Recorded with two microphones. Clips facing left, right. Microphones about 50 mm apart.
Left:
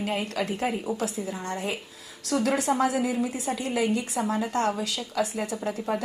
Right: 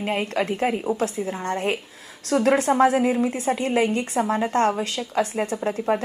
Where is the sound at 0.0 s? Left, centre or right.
Right.